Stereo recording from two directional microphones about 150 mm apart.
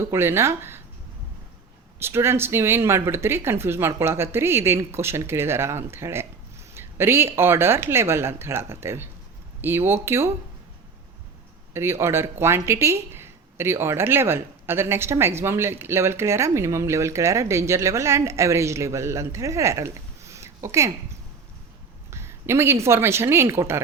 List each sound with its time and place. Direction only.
0.0 s speech: 15° right (ahead or behind)
2.0 s speech: 15° right (ahead or behind)
11.7 s speech: 15° right (ahead or behind)
22.1 s a woman's voice: 15° right (ahead or behind)